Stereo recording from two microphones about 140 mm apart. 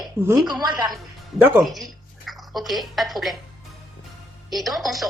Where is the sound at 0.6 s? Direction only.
30° right (ahead or behind).